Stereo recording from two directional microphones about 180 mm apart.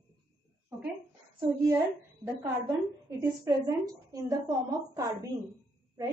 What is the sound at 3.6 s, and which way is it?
A woman's voice, 20° right (ahead or behind).